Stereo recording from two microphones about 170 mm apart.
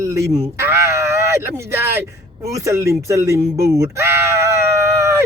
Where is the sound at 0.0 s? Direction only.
20° right (ahead or behind).